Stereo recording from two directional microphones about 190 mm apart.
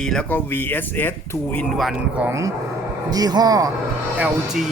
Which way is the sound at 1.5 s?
Centre (ahead or behind).